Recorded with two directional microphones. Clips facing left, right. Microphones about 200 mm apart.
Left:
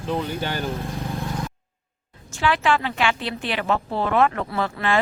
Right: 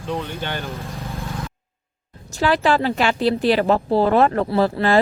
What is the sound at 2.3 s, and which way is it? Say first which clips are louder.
Speech: right 3 dB; 35° right (ahead or behind).